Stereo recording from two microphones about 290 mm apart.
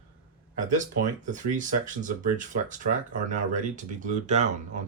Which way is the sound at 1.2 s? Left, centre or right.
Right.